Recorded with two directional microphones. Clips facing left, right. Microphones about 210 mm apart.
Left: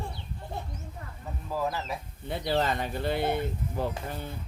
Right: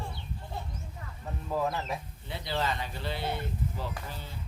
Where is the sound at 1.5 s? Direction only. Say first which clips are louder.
Even; centre (ahead or behind).